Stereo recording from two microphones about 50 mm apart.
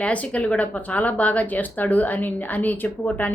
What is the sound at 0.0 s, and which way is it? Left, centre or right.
Speech, left.